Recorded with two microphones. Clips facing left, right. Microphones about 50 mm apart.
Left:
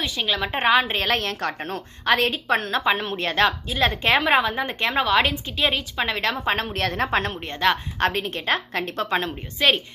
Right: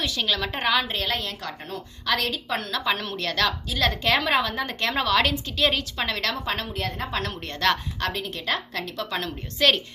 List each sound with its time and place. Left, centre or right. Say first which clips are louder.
0.0 s a woman's voice: left 1 dB; centre
0.6 s a woman's voice: left 6 dB; left
6.7 s a woman's voice: left 6 dB; left
7.1 s a woman's voice: left 5 dB; left
7.9 s a woman's voice: left 6 dB; left
9.6 s a woman's voice: left 1 dB; centre